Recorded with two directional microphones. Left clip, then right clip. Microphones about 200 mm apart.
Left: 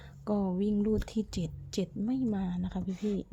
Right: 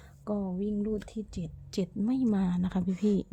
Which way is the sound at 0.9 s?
15° left (ahead or behind).